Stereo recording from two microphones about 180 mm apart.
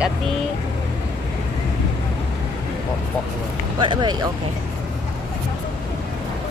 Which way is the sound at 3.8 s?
25° right (ahead or behind).